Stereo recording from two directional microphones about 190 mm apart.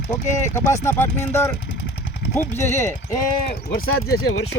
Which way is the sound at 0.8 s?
15° left (ahead or behind).